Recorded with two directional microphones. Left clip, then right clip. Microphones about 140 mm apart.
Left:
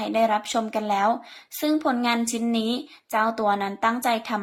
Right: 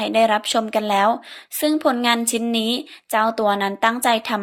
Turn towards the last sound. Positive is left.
turn(degrees=-30)  # may be behind; listen again after turning